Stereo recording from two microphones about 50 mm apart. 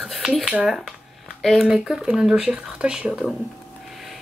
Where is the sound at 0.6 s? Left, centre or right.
Centre.